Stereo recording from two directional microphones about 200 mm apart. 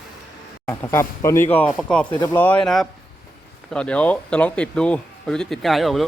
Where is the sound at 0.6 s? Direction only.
10° left (ahead or behind).